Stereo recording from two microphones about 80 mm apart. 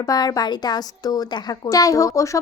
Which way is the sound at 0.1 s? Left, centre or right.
Left.